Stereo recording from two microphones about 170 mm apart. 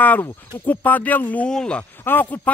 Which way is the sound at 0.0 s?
10° left (ahead or behind).